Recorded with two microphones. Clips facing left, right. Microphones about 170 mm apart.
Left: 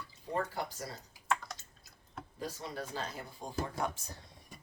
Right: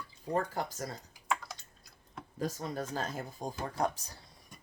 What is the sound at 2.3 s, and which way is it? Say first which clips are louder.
Speech: right 5 dB; 45° right (ahead or behind).